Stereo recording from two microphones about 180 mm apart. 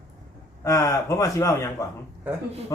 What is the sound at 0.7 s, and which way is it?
A man's voice, 20° left (ahead or behind).